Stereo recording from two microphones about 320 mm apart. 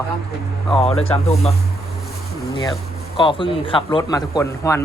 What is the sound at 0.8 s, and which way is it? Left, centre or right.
Speech, centre.